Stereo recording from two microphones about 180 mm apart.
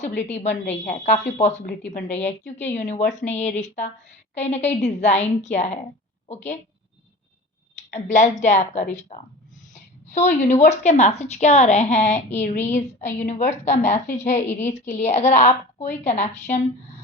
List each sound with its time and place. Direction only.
0.2 s a woman's voice: 40° left (ahead or behind)
2.4 s a woman's voice: 10° left (ahead or behind)
2.7 s a woman's voice: 40° left (ahead or behind)
7.8 s a woman's voice: 40° left (ahead or behind)
9.7 s a sound: 40° left (ahead or behind)
10.4 s a woman's voice: 40° left (ahead or behind)